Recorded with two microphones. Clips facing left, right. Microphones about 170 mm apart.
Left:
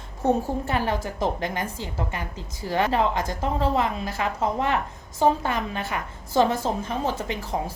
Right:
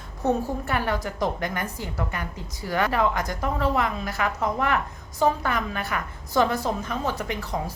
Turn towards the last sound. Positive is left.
turn(degrees=25)  # may be behind; listen again after turning